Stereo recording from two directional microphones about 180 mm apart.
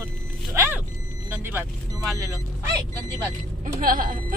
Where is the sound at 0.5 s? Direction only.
15° right (ahead or behind).